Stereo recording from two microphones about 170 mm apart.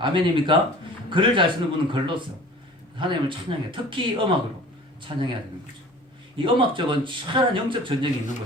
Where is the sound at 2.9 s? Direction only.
30° right (ahead or behind).